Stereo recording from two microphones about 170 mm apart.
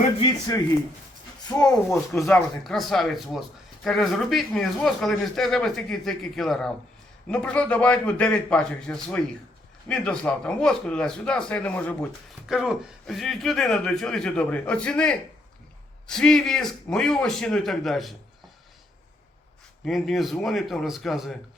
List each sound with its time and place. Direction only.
0.2 s a man's voice: 20° left (ahead or behind)
2.6 s a man's voice: centre (ahead or behind)
12.5 s speech: centre (ahead or behind)
19.8 s speech: centre (ahead or behind)